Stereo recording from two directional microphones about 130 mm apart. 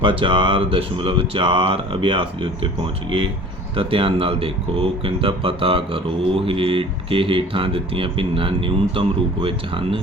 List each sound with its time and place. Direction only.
0.0 s speech: 40° right (ahead or behind)
3.8 s speech: 45° right (ahead or behind)